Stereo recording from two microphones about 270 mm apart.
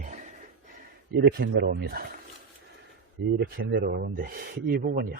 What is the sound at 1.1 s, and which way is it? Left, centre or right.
Speech, right.